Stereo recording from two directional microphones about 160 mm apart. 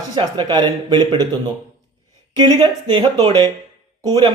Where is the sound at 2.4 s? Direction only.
25° right (ahead or behind).